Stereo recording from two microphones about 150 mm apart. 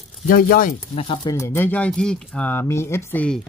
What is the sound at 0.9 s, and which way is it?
Speech, 35° left (ahead or behind).